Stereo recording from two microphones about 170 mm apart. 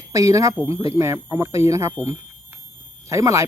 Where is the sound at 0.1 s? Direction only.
20° right (ahead or behind).